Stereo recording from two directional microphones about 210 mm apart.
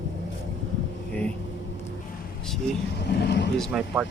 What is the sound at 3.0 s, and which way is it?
Speech, 55° left (ahead or behind).